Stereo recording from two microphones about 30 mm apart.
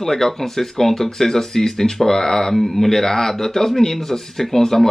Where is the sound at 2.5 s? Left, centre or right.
Centre.